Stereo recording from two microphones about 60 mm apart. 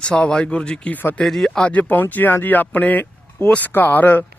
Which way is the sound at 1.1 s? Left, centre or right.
Centre.